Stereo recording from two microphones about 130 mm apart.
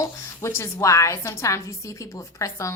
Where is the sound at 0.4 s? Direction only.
20° left (ahead or behind).